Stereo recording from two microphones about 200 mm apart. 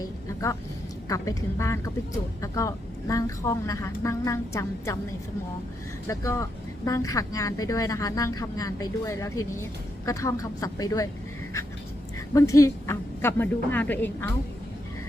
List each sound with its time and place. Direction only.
1.0 s speech: 15° left (ahead or behind)
6.1 s speech: 15° left (ahead or behind)
12.3 s speech: 15° left (ahead or behind)